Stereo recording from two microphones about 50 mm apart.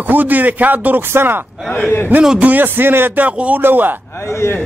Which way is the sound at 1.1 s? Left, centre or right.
Right.